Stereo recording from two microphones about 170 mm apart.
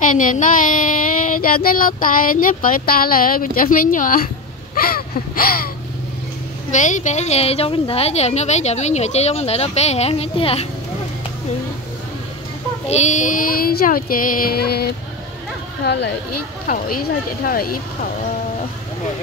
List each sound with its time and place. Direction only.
0.0 s child singing: 50° left (ahead or behind)
6.7 s a woman's voice: 45° left (ahead or behind)
12.8 s child singing: 40° left (ahead or behind); by 14.9 s 65° left (ahead or behind)
15.8 s speech: 85° left
17.5 s child singing: 60° left (ahead or behind)